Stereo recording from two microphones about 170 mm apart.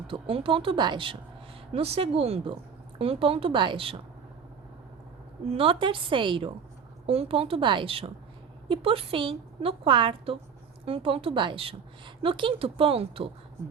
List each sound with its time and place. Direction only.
0.1 s a woman's voice: 30° right (ahead or behind)
5.5 s a woman's voice: 35° right (ahead or behind)